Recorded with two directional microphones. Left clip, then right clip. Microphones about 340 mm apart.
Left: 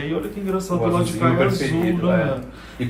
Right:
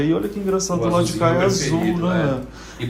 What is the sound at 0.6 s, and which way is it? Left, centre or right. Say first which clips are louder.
Speech: right 1 dB; centre.